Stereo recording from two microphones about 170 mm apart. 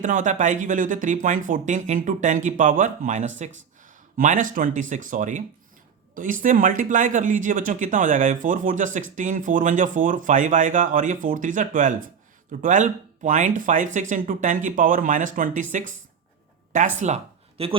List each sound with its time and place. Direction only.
0.0 s speech: 50° right (ahead or behind)
17.6 s speech: 35° right (ahead or behind)